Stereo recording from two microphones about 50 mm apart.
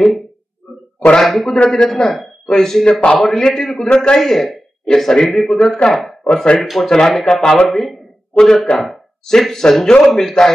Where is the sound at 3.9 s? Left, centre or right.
Left.